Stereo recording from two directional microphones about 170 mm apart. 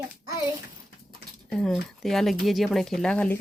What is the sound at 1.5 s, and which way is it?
Speech, centre (ahead or behind).